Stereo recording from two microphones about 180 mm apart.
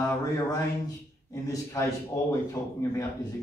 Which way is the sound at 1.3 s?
15° left (ahead or behind).